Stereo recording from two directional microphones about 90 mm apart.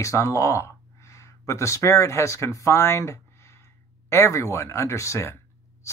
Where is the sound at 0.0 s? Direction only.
35° left (ahead or behind).